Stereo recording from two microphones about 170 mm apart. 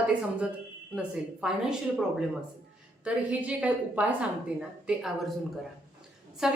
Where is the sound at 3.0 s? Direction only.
10° right (ahead or behind).